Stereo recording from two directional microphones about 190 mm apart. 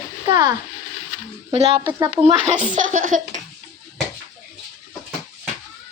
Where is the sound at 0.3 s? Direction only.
20° right (ahead or behind).